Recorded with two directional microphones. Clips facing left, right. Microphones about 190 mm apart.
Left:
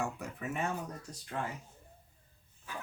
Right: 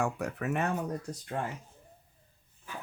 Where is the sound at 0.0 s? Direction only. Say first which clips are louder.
Right 6 dB; 70° right (ahead or behind).